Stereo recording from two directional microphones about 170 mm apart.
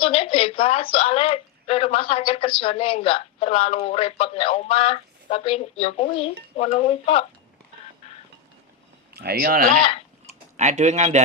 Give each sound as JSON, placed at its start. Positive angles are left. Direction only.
{"t": 0.0, "sound": "speech", "side_deg": 35}
{"t": 9.1, "sound": "speech", "side_deg": -65}
{"t": 10.6, "sound": "speech", "side_deg": -40}